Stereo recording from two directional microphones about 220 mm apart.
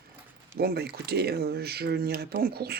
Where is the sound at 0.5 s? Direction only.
45° right (ahead or behind).